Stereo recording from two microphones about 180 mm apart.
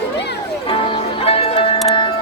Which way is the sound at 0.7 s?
30° left (ahead or behind).